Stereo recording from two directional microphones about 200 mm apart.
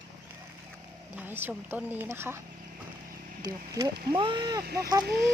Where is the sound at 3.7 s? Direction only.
25° right (ahead or behind).